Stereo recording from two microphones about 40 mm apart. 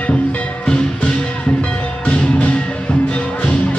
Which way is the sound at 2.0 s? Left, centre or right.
Left.